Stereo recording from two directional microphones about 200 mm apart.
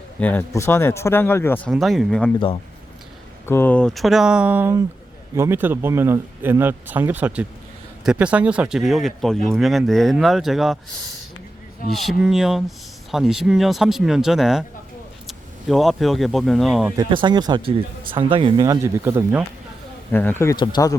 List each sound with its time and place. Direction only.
0.2 s speech: 10° left (ahead or behind)
3.4 s speech: 10° left (ahead or behind)
11.9 s speech: centre (ahead or behind)
17.0 s speech: 20° right (ahead or behind)
20.1 s speech: 10° left (ahead or behind)